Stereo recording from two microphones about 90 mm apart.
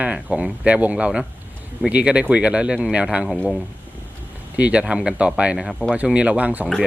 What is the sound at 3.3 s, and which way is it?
Speech, 10° left (ahead or behind).